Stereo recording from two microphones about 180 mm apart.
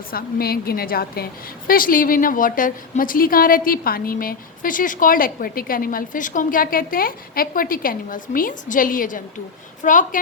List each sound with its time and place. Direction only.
0.1 s a woman's voice: 55° left (ahead or behind)